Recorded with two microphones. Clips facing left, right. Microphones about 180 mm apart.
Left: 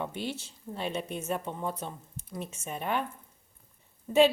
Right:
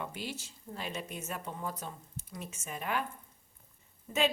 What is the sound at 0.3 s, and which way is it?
Speech, 30° left (ahead or behind).